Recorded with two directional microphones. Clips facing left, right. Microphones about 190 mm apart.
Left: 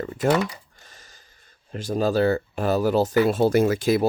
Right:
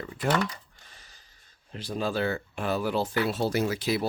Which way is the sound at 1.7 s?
45° left (ahead or behind).